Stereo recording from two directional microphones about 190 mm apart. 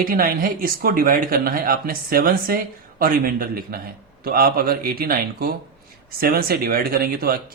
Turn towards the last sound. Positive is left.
turn(degrees=-50)  # may be behind; listen again after turning